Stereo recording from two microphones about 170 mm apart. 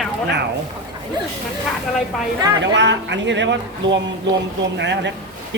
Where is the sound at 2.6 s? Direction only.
90° right.